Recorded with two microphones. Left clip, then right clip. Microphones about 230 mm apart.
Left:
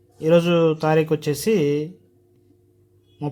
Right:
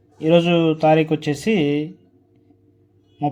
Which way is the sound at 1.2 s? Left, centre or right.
Left.